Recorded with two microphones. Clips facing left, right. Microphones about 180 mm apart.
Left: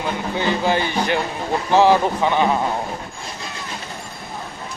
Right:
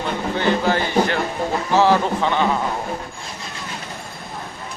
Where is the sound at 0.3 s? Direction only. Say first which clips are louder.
Right 1 dB; 15° left (ahead or behind).